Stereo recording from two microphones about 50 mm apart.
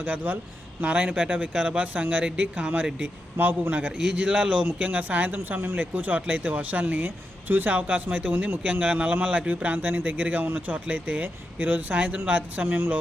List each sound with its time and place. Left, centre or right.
0.0 s a man's voice: right
3.3 s a man's voice: right
4.1 s a man's voice: right
5.7 s speech: right
9.6 s a man's voice: right
12.6 s a man's voice: right